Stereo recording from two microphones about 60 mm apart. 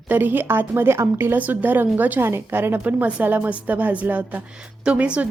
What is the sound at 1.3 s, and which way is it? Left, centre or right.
Speech, right.